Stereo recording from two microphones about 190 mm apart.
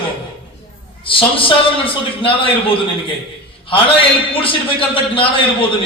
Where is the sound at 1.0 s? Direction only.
25° left (ahead or behind).